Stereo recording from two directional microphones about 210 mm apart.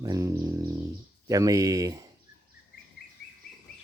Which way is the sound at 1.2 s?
15° right (ahead or behind).